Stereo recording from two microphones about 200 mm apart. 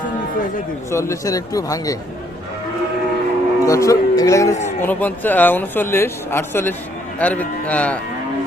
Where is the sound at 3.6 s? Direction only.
15° left (ahead or behind).